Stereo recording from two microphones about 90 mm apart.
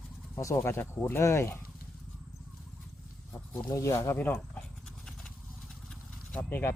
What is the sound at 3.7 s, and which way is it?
Speech, 35° left (ahead or behind).